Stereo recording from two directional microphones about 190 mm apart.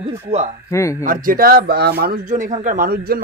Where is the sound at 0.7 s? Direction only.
15° left (ahead or behind).